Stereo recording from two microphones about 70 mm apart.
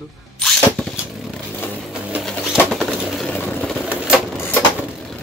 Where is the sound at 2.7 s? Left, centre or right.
Centre.